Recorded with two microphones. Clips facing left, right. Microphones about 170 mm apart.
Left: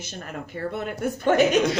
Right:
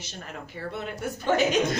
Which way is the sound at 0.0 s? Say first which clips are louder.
Left 4 dB; 50° left (ahead or behind).